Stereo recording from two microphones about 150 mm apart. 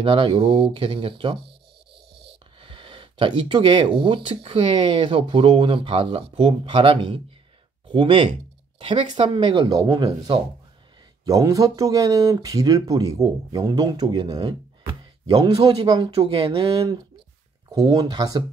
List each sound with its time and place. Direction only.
0.0 s speech: 35° right (ahead or behind)
2.6 s speech: 35° right (ahead or behind)
14.9 s a sound: 25° right (ahead or behind)
15.5 s speech: 35° right (ahead or behind)
17.6 s speech: 25° right (ahead or behind)